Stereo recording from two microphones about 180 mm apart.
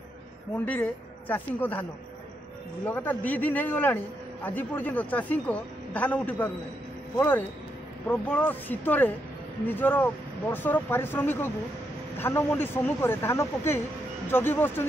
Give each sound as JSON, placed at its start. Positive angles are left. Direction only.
{"t": 0.7, "sound": "a man's voice", "side_deg": 10}